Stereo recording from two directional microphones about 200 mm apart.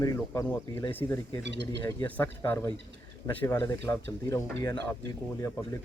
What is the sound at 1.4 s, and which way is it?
Speech, 60° right (ahead or behind).